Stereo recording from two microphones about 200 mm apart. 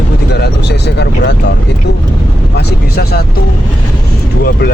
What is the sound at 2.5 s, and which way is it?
Speech, 55° left (ahead or behind).